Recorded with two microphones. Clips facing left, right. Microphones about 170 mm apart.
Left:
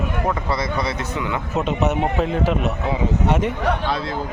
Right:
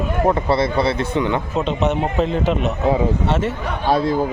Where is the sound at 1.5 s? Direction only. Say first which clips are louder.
Left 2 dB; 5° left (ahead or behind).